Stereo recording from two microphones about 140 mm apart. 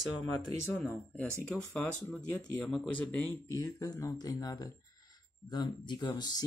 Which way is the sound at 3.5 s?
25° left (ahead or behind).